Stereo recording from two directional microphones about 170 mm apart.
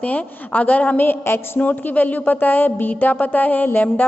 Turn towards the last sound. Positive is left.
turn(degrees=10)  # may be behind; listen again after turning